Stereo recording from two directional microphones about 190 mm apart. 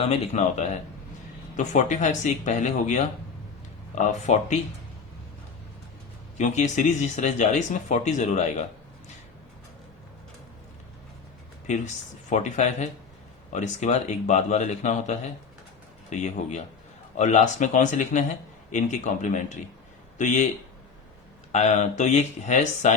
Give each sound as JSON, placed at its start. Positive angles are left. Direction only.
{"t": 0.0, "sound": "speech", "side_deg": 35}
{"t": 6.3, "sound": "speech", "side_deg": 40}
{"t": 12.3, "sound": "speech", "side_deg": 40}
{"t": 21.5, "sound": "speech", "side_deg": 35}